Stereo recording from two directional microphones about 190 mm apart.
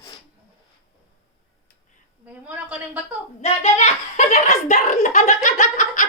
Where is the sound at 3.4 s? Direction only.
35° left (ahead or behind).